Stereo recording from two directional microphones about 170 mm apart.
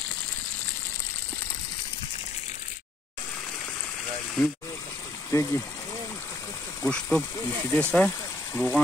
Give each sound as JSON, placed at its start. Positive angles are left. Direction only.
{"t": 5.3, "sound": "speech", "side_deg": 15}
{"t": 6.8, "sound": "speech", "side_deg": 10}